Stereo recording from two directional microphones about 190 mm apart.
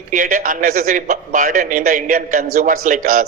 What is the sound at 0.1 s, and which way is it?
A man's voice, 40° right (ahead or behind).